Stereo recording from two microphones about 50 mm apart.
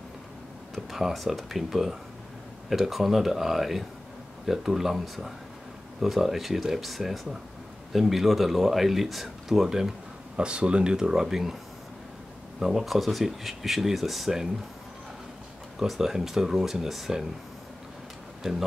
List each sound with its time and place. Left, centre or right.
0.9 s speech: centre
10.3 s speech: centre
12.5 s speech: centre
15.8 s speech: centre